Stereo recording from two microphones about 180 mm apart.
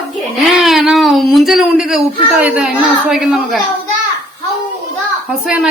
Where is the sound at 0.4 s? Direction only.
Centre (ahead or behind).